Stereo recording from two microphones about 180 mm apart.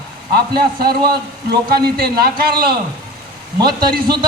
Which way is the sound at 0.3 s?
60° right (ahead or behind).